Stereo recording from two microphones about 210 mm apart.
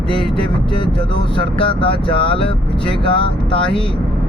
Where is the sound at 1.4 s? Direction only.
25° left (ahead or behind).